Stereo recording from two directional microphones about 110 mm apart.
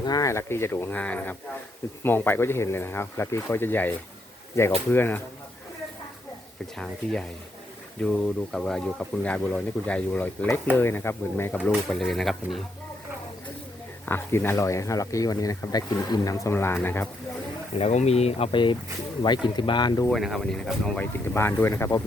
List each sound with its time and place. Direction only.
0.0 s speech: 35° left (ahead or behind); by 5.2 s 15° left (ahead or behind)
6.7 s speech: 5° left (ahead or behind)
11.7 s speech: 5° left (ahead or behind)
14.0 s speech: 20° left (ahead or behind)
17.7 s speech: 75° left (ahead or behind); by 20.1 s 45° left (ahead or behind)
20.1 s speech: centre (ahead or behind)
21.0 s speech: 20° left (ahead or behind)